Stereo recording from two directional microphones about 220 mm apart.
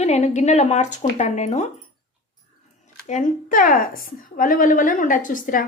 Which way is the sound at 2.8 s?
35° left (ahead or behind).